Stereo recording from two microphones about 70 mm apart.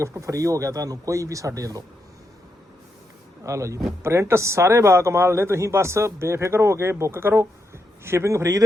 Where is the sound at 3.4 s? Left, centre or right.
Right.